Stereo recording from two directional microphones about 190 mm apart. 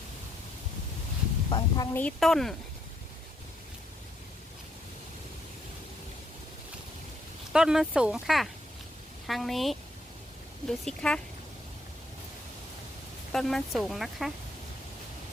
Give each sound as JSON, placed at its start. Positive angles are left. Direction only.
{"t": 1.5, "sound": "a sound", "side_deg": 25}
{"t": 1.9, "sound": "speech", "side_deg": 10}
{"t": 7.5, "sound": "speech", "side_deg": -5}
{"t": 13.3, "sound": "speech", "side_deg": 0}